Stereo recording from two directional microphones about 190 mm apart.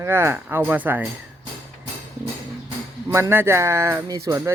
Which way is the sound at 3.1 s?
15° right (ahead or behind).